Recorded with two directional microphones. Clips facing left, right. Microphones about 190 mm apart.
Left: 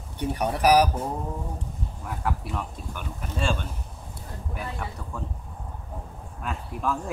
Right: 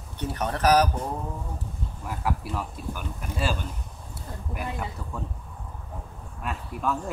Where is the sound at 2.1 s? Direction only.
5° right (ahead or behind).